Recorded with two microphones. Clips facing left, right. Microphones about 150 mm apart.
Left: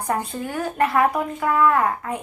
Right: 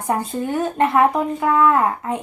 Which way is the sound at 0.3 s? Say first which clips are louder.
Right 5 dB; 20° right (ahead or behind).